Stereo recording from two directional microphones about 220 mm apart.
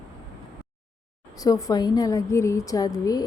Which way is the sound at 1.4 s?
15° left (ahead or behind).